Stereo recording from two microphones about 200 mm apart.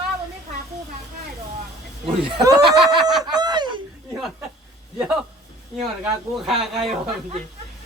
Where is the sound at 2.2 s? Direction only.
25° right (ahead or behind).